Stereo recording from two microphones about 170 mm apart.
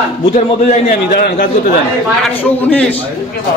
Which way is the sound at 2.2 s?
5° left (ahead or behind).